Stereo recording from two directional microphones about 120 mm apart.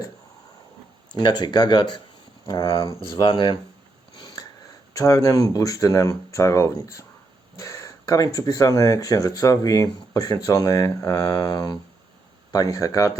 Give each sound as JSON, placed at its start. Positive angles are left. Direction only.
{"t": 1.1, "sound": "speech", "side_deg": 35}
{"t": 2.8, "sound": "speech", "side_deg": -35}
{"t": 3.2, "sound": "speech", "side_deg": 40}
{"t": 4.9, "sound": "speech", "side_deg": 30}